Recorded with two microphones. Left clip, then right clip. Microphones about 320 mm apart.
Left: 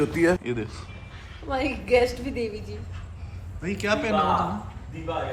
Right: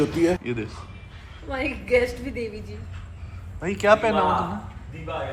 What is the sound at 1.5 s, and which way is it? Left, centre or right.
Speech, centre.